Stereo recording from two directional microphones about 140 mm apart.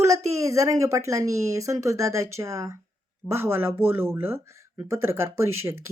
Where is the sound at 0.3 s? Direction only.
20° right (ahead or behind).